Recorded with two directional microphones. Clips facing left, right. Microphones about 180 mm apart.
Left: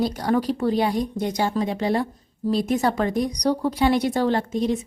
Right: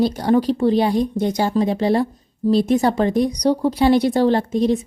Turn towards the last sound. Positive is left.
turn(degrees=-35)  # may be behind; listen again after turning